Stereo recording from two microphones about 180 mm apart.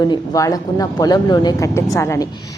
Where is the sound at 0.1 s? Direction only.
20° left (ahead or behind).